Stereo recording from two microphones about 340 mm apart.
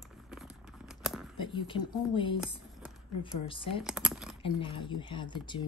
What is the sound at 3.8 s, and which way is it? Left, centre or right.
Typing, centre.